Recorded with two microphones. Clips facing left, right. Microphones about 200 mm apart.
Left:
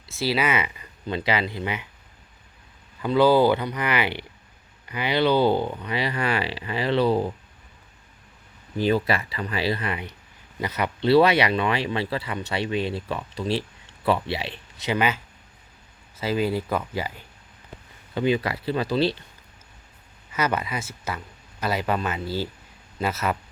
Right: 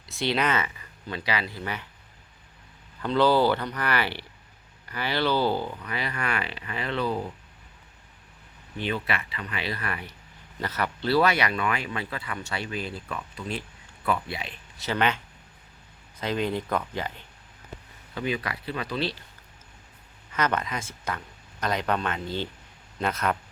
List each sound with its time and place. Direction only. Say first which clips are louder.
0.0 s speech: left 2 dB; 5° left (ahead or behind)
1.1 s speech: left 5 dB; 25° left (ahead or behind)
3.0 s speech: left 4 dB; 10° left (ahead or behind); by 7.3 s 30° left (ahead or behind)
8.8 s speech: left 8 dB; 35° left (ahead or behind)
14.8 s speech: left 2 dB; 10° left (ahead or behind)
18.1 s speech: left 7 dB; 30° left (ahead or behind)
20.3 s speech: left 2 dB; 10° left (ahead or behind)